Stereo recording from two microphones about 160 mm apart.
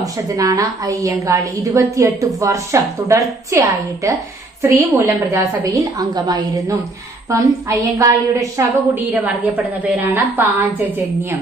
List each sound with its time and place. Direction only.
0.0 s a woman's voice: 20° right (ahead or behind)
9.3 s a woman's voice: 10° right (ahead or behind)